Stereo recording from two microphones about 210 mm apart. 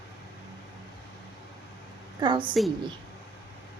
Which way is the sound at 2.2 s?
20° right (ahead or behind).